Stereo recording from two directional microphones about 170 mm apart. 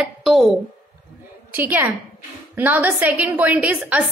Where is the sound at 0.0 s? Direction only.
Centre (ahead or behind).